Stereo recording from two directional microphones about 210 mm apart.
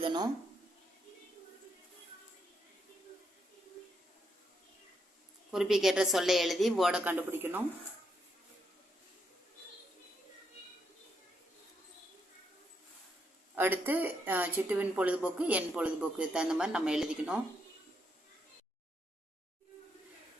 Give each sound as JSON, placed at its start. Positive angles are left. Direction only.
{"t": 0.0, "sound": "speech", "side_deg": -20}
{"t": 5.5, "sound": "a woman's voice", "side_deg": 0}
{"t": 13.6, "sound": "a woman's voice", "side_deg": -10}